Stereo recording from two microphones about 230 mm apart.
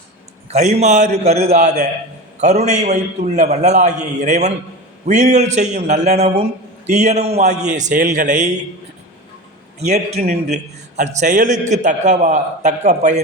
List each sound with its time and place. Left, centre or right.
0.5 s a man's voice: right
9.8 s a man's voice: right